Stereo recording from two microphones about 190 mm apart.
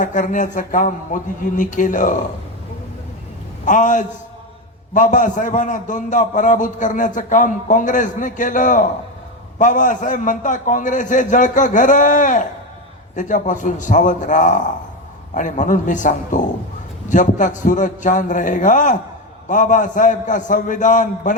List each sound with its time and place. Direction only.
0.0 s a man's voice: 40° left (ahead or behind)
3.7 s a man's voice: 40° left (ahead or behind)